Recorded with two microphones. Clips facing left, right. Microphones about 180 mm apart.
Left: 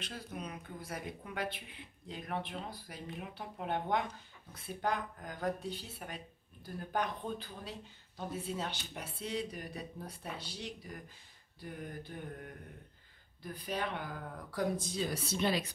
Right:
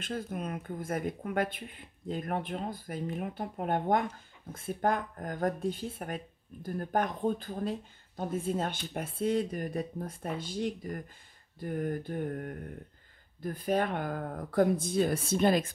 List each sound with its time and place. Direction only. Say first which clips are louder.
0.0 s speech: right 8 dB; 50° right (ahead or behind)